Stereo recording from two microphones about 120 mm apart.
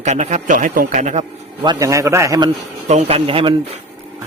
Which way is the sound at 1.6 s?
40° right (ahead or behind).